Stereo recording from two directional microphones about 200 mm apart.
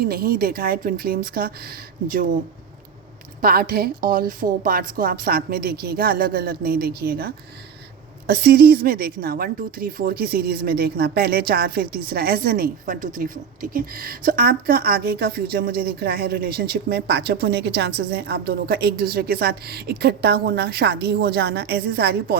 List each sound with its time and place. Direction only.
0.0 s speech: 50° right (ahead or behind)
3.4 s speech: 50° right (ahead or behind)